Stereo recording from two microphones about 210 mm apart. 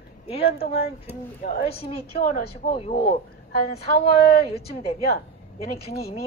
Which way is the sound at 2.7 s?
25° left (ahead or behind).